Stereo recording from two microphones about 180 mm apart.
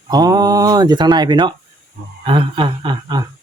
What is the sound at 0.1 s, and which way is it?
Speech, 20° right (ahead or behind).